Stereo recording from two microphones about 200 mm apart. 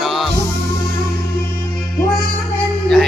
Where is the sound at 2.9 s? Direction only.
Centre (ahead or behind).